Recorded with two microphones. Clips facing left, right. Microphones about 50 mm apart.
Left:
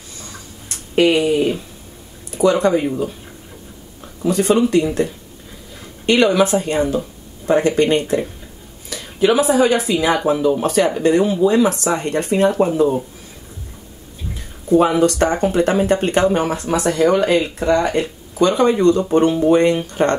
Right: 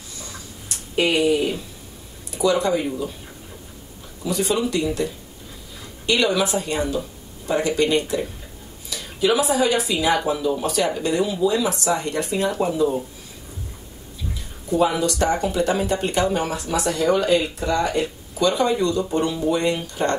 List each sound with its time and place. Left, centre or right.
0.2 s a sound: left
1.0 s speech: left
4.2 s speech: left
14.3 s speech: left